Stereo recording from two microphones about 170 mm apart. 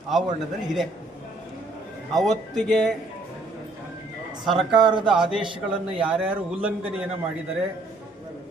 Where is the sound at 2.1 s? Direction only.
Centre (ahead or behind).